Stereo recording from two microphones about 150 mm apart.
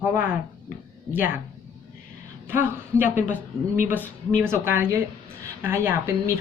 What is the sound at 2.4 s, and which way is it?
Speech, 15° right (ahead or behind).